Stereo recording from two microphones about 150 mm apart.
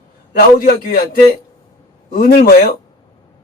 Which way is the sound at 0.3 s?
90° left.